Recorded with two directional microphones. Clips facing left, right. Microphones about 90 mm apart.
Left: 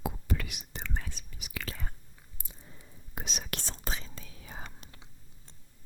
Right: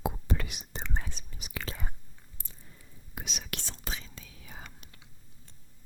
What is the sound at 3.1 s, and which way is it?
Whispering, 40° left (ahead or behind).